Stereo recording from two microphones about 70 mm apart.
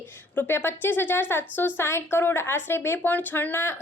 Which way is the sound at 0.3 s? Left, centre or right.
Left.